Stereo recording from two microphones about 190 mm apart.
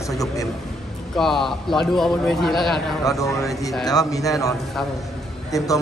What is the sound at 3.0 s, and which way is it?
A man's voice, 15° left (ahead or behind).